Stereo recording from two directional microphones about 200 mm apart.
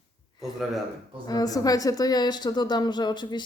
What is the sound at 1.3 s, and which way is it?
Speech, 20° left (ahead or behind).